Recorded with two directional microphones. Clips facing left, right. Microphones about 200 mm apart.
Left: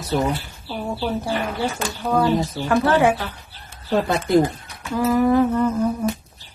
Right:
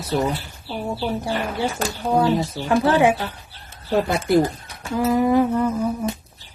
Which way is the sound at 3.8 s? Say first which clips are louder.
Right 1 dB; 5° right (ahead or behind).